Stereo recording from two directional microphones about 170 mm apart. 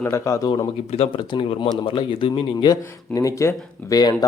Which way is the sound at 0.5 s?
35° left (ahead or behind).